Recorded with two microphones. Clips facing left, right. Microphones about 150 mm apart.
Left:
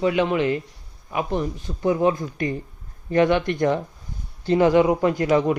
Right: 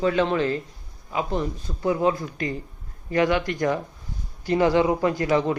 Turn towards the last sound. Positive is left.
turn(degrees=20)  # may be behind; listen again after turning